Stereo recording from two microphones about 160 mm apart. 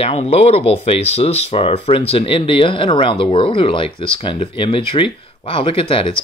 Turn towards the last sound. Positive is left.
turn(degrees=35)  # may be behind; listen again after turning